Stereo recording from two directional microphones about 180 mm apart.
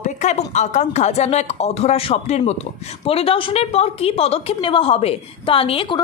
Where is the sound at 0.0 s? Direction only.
40° left (ahead or behind).